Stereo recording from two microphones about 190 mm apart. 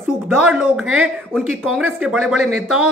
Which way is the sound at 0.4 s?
5° right (ahead or behind).